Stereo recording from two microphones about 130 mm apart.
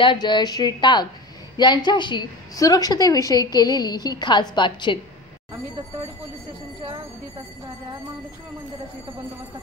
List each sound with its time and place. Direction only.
0.0 s a woman's voice: 35° left (ahead or behind)